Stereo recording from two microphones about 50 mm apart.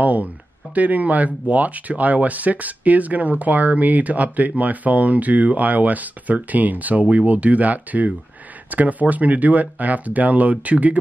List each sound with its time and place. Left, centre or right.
0.0 s speech: right